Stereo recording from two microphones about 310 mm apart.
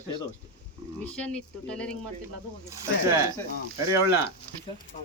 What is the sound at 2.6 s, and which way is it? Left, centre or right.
Speech, centre.